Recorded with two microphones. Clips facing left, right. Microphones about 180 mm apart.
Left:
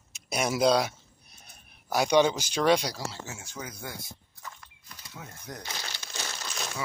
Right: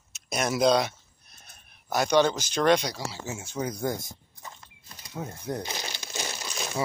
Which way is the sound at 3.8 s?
45° right (ahead or behind).